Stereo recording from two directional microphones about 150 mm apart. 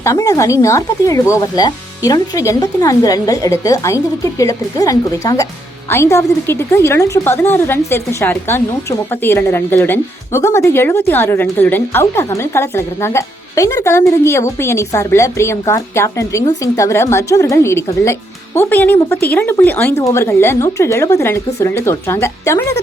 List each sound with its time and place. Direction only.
0.0 s a woman's voice: 20° left (ahead or behind)